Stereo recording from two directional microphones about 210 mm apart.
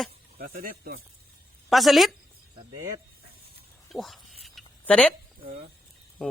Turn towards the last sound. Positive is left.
turn(degrees=5)  # may be behind; listen again after turning